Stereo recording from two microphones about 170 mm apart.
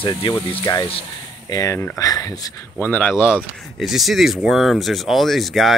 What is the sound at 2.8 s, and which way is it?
Speech, 10° left (ahead or behind).